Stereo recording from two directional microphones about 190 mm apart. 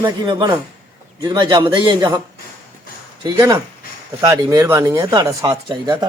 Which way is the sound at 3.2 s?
15° right (ahead or behind).